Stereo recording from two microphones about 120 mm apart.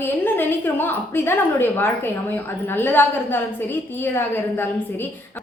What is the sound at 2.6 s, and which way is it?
A woman's voice, 20° left (ahead or behind).